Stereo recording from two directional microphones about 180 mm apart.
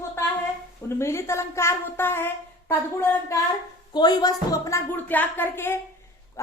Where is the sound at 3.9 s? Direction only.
25° left (ahead or behind).